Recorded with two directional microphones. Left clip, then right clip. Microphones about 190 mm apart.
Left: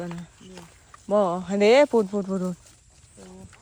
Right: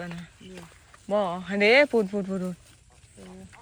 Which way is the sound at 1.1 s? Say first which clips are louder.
Left 4 dB; 25° left (ahead or behind).